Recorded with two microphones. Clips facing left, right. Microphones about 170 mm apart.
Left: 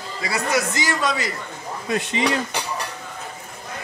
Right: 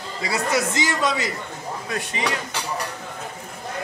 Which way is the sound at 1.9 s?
20° left (ahead or behind).